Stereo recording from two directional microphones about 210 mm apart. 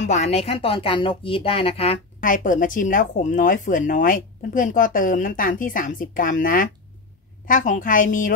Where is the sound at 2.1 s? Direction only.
40° left (ahead or behind).